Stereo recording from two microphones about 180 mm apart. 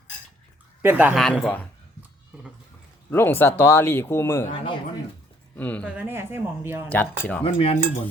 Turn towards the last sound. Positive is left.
turn(degrees=30)  # may be behind; listen again after turning